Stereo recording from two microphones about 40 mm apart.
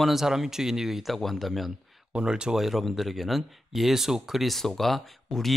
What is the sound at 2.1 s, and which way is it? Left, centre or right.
Speech, right.